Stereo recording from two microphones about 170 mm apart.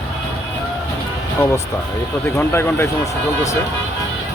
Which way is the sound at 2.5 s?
15° left (ahead or behind).